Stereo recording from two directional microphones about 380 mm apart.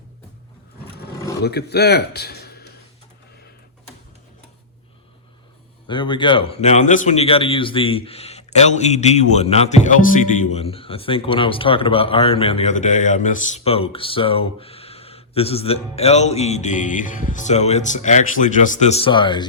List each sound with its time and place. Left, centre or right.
1.5 s a man's voice: left
5.9 s a man's voice: centre